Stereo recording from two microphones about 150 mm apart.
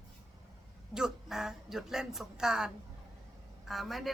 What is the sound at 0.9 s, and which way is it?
A woman's voice, 5° right (ahead or behind).